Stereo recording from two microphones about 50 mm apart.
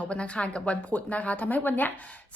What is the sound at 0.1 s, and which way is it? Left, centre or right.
Speech, left.